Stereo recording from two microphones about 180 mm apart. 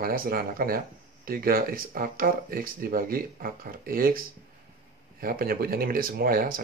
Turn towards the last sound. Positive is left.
turn(degrees=-55)  # may be behind; listen again after turning